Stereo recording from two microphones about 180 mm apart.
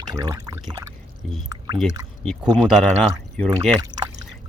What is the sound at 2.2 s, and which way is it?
Speech, centre (ahead or behind).